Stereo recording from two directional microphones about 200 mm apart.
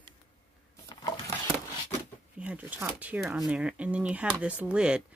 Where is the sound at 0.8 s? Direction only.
20° left (ahead or behind).